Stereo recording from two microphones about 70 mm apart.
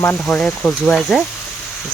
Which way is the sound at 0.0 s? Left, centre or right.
Left.